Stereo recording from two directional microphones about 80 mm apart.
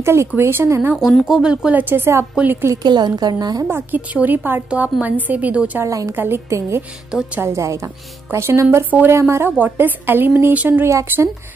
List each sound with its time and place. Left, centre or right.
0.0 s speech: right
0.9 s a woman's voice: centre
1.2 s speech: centre
1.8 s a woman's voice: right
2.7 s a woman's voice: right
3.6 s a woman's voice: right
5.9 s a woman's voice: right
6.1 s a woman's voice: right
7.1 s speech: centre
7.4 s a woman's voice: right
10.9 s speech: right